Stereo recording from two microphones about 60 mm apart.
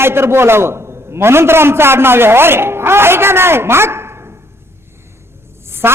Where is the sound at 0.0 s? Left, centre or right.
Right.